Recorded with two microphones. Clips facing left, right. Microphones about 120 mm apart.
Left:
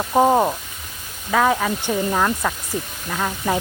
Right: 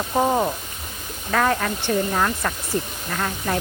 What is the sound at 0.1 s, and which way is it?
Speech, 25° left (ahead or behind).